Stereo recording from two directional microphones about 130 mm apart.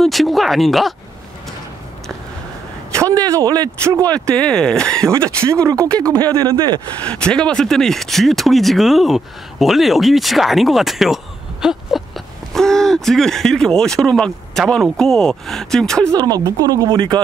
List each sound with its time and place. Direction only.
0.0 s speech: centre (ahead or behind)
2.9 s speech: 25° right (ahead or behind)
4.1 s speech: 10° left (ahead or behind)
5.1 s speech: 20° right (ahead or behind)
7.1 s speech: 5° left (ahead or behind)
11.6 s a sound: centre (ahead or behind)
12.5 s speech: 5° left (ahead or behind)
16.1 s speech: 30° right (ahead or behind)